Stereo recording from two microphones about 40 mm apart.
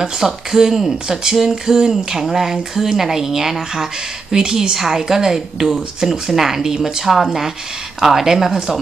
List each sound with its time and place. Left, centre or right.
0.0 s speech: centre